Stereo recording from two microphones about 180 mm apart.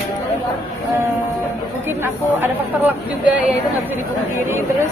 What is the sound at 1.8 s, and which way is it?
A woman's voice, 10° right (ahead or behind).